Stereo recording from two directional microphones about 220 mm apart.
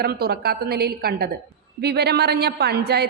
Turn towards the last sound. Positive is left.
turn(degrees=-45)  # may be behind; listen again after turning